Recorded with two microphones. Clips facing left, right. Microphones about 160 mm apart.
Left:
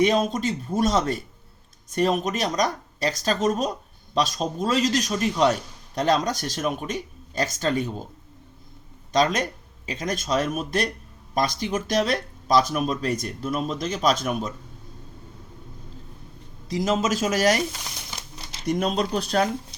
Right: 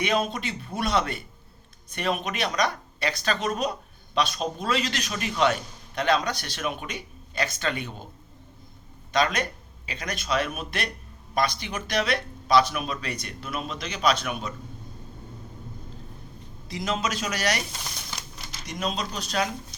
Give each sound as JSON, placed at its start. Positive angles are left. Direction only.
{"t": 0.0, "sound": "speech", "side_deg": 40}
{"t": 9.1, "sound": "speech", "side_deg": 40}
{"t": 16.6, "sound": "speech", "side_deg": 40}
{"t": 18.6, "sound": "speech", "side_deg": 55}